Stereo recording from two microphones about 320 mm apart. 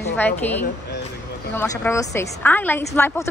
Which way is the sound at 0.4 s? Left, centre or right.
Centre.